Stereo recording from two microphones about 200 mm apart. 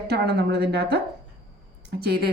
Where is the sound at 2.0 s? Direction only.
50° right (ahead or behind).